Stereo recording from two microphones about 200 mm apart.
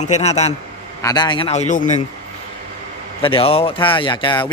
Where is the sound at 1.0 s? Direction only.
20° left (ahead or behind).